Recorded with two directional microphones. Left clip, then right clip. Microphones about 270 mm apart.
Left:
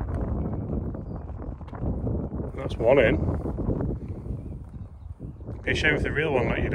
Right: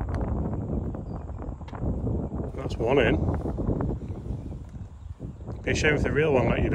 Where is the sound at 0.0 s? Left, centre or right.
Centre.